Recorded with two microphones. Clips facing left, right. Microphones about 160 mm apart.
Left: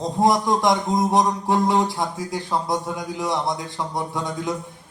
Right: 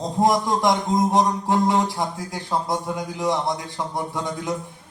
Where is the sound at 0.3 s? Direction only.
20° left (ahead or behind).